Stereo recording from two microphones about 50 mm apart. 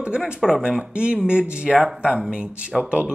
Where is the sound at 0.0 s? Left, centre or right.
Centre.